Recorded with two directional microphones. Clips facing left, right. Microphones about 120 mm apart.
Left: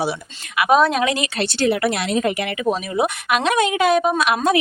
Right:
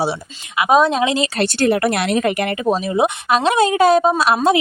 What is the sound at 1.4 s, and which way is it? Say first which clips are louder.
A woman's voice: right 2 dB; 50° right (ahead or behind).